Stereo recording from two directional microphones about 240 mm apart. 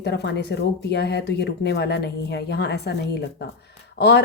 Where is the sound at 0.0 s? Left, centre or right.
Left.